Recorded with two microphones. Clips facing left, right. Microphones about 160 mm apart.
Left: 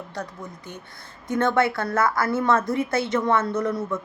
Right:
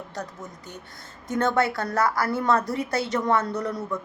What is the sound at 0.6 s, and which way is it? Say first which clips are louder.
A woman's voice: left 2 dB; 40° right (ahead or behind).